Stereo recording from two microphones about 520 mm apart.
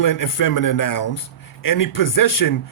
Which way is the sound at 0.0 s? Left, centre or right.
Left.